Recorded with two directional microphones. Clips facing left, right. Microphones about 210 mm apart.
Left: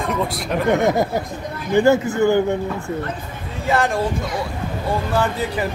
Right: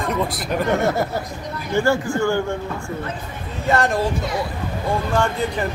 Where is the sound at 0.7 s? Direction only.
15° left (ahead or behind).